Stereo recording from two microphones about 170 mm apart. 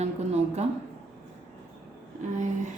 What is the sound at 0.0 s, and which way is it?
Speech, 40° right (ahead or behind).